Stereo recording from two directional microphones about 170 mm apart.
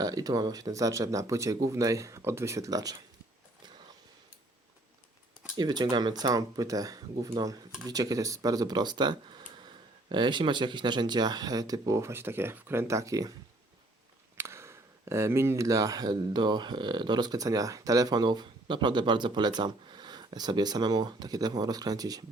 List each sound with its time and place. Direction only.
0.0 s speech: 20° right (ahead or behind)
5.5 s speech: 25° right (ahead or behind)
14.3 s speech: 15° right (ahead or behind)